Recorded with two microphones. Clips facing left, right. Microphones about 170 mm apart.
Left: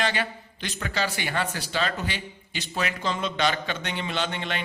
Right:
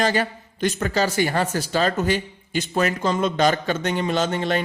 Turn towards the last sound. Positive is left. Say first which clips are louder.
# right 8 dB
turn(degrees=-40)  # may be behind; listen again after turning